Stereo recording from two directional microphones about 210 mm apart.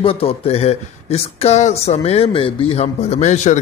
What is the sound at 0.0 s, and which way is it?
Speech, 25° left (ahead or behind).